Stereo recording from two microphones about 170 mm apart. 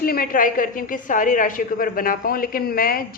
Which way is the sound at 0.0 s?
60° left (ahead or behind).